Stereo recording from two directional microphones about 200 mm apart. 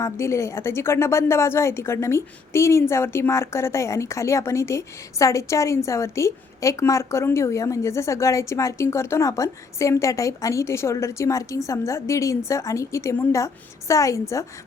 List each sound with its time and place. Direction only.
0.0 s a woman's voice: 15° left (ahead or behind)